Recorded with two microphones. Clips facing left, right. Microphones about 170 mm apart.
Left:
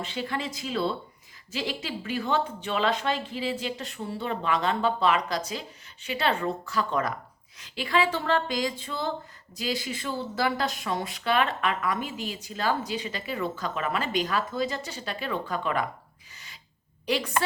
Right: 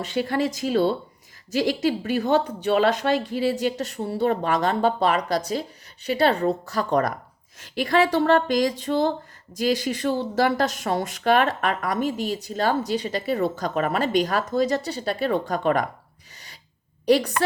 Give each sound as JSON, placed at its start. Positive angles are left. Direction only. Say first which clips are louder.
{"t": 0.0, "sound": "a woman's voice", "louder": "right 8 dB", "side_deg": -45}
{"t": 17.1, "sound": "a woman's voice", "louder": "right 9 dB", "side_deg": -40}